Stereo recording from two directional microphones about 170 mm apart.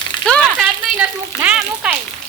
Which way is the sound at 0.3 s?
Centre (ahead or behind).